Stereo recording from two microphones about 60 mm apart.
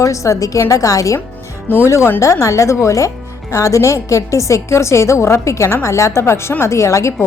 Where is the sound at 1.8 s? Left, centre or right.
Left.